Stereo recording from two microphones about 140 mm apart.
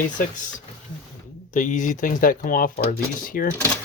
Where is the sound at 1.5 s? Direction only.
65° left (ahead or behind); by 3.5 s 85° left.